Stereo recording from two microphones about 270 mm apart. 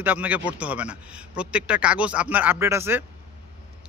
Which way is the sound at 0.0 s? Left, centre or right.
Centre.